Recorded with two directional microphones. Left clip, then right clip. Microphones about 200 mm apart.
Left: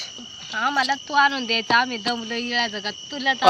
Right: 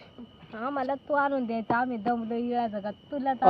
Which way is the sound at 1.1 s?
40° right (ahead or behind).